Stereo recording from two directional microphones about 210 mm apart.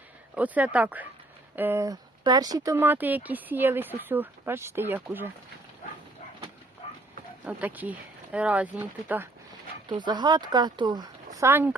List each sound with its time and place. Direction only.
0.3 s speech: 5° right (ahead or behind)
7.4 s speech: 10° right (ahead or behind)
9.9 s speech: 20° right (ahead or behind)